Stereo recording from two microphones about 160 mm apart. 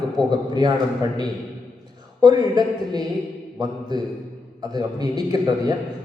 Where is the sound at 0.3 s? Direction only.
25° right (ahead or behind).